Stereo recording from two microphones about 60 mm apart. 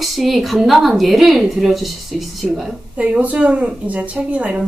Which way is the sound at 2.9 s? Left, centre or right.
Right.